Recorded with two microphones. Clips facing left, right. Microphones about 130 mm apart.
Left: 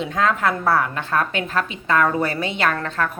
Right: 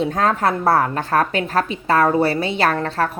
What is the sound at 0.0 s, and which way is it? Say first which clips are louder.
A woman's voice: right 2 dB; 40° right (ahead or behind).